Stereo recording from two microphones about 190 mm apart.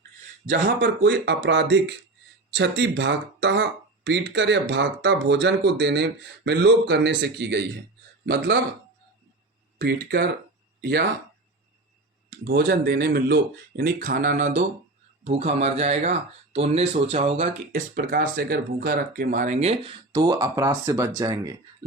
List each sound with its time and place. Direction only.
0.8 s speech: 70° right (ahead or behind)
9.7 s speech: 60° right (ahead or behind)
10.8 s a sound: 60° right (ahead or behind)
12.5 s speech: 55° right (ahead or behind); by 21.5 s 20° right (ahead or behind)